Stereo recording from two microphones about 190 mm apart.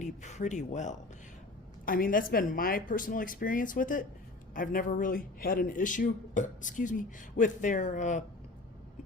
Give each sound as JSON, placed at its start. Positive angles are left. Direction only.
{"t": 0.0, "sound": "speech", "side_deg": 40}